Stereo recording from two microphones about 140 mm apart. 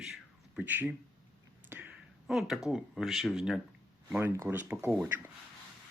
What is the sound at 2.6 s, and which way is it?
Speech, 5° right (ahead or behind).